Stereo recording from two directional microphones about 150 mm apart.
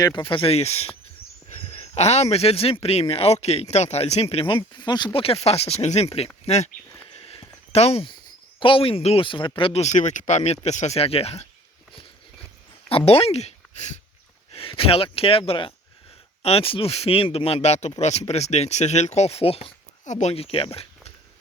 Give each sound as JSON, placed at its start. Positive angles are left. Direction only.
{"t": 0.0, "sound": "speech", "side_deg": 30}
{"t": 7.2, "sound": "a sound", "side_deg": 40}
{"t": 8.5, "sound": "speech", "side_deg": 35}
{"t": 13.1, "sound": "speech", "side_deg": 40}